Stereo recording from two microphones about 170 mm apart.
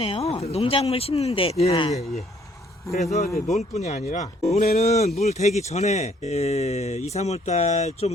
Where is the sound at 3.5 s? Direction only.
40° left (ahead or behind).